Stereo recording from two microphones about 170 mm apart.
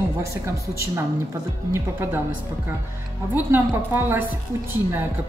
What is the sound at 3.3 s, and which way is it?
A woman's voice, 10° right (ahead or behind).